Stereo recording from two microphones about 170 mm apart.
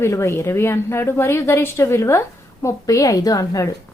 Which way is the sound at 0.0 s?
15° left (ahead or behind).